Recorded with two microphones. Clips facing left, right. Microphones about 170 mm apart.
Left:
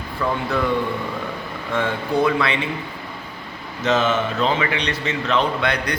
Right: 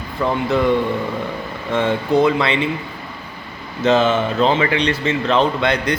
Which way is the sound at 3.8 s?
30° right (ahead or behind).